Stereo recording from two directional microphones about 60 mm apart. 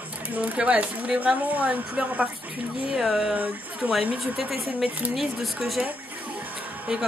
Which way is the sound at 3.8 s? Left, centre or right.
Right.